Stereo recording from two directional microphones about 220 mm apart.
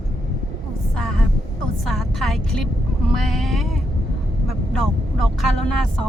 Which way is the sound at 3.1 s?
Centre (ahead or behind).